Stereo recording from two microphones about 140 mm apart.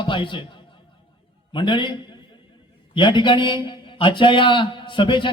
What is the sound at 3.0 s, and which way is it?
A man's voice, 35° left (ahead or behind).